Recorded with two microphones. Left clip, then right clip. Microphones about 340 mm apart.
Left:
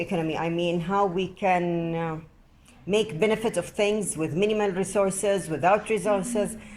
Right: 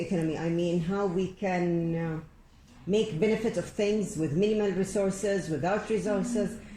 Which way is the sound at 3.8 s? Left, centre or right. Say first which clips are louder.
Left 3 dB; left.